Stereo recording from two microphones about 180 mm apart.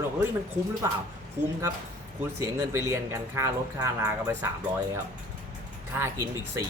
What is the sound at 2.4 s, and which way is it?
Speech, 15° right (ahead or behind).